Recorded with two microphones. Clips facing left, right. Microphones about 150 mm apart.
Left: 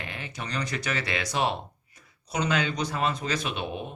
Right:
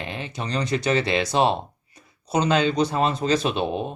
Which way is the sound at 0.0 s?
25° right (ahead or behind).